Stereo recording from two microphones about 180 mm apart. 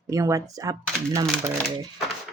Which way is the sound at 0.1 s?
15° right (ahead or behind).